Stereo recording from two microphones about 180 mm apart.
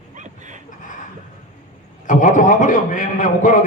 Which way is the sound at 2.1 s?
45° left (ahead or behind).